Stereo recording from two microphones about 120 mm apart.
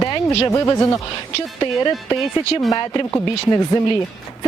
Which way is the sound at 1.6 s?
30° left (ahead or behind).